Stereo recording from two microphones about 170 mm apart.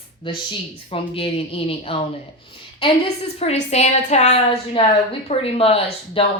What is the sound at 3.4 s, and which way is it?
Speech, 40° left (ahead or behind).